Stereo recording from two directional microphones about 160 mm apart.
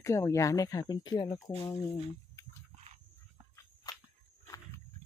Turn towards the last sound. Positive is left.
turn(degrees=25)  # may be behind; listen again after turning